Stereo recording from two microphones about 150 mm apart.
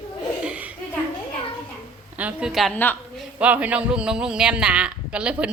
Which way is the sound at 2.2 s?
10° right (ahead or behind).